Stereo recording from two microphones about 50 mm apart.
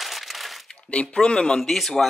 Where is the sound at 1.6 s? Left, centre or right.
Centre.